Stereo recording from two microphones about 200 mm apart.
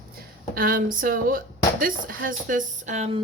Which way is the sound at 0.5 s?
45° right (ahead or behind).